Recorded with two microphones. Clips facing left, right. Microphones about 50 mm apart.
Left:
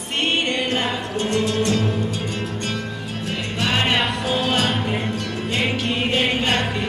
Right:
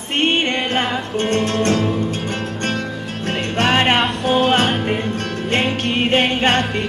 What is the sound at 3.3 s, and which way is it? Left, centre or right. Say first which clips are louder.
Music: right 6 dB; right.